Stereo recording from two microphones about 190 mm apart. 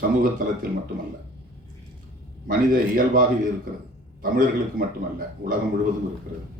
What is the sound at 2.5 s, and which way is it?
Speech, 45° right (ahead or behind).